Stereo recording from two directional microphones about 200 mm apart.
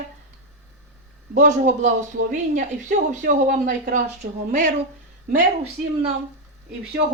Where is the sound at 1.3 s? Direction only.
40° right (ahead or behind).